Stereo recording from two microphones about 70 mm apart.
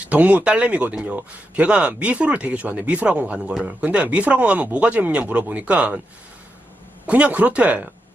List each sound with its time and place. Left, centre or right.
0.0 s speech: centre
7.1 s speech: right